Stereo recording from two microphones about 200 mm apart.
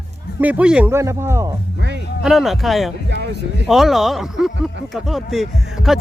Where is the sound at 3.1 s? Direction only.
60° right (ahead or behind).